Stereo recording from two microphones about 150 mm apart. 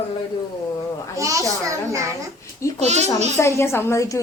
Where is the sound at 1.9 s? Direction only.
20° right (ahead or behind).